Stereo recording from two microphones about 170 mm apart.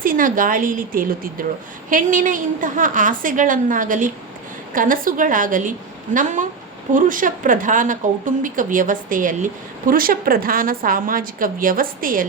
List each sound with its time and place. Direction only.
0.0 s speech: 55° right (ahead or behind)